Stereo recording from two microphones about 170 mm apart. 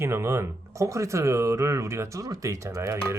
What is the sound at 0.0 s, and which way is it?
Speech, 15° right (ahead or behind).